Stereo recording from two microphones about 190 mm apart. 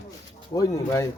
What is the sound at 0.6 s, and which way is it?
Speech, 15° left (ahead or behind).